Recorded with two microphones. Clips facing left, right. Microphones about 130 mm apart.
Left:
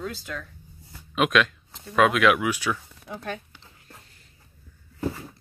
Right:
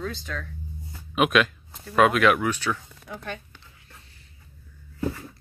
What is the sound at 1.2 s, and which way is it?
Speech, 5° right (ahead or behind).